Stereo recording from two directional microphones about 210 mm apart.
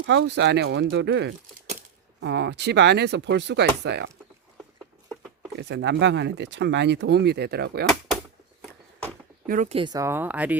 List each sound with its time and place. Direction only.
0.0 s speech: 55° right (ahead or behind)
5.5 s speech: 55° right (ahead or behind)
9.5 s speech: 40° right (ahead or behind)
9.7 s speech: 20° right (ahead or behind)